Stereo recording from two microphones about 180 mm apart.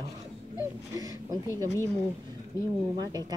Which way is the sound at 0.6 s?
20° right (ahead or behind).